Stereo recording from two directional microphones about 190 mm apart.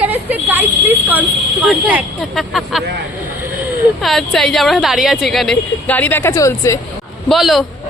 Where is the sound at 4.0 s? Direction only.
Centre (ahead or behind).